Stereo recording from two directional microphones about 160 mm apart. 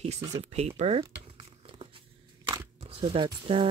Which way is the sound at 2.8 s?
35° right (ahead or behind).